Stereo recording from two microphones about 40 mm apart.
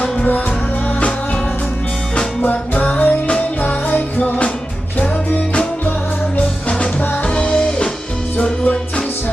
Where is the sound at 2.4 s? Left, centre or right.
Left.